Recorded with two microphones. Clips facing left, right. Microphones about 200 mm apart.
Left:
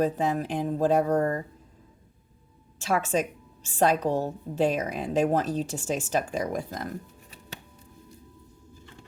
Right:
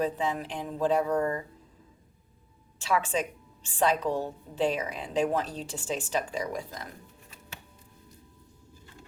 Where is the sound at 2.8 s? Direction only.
45° left (ahead or behind).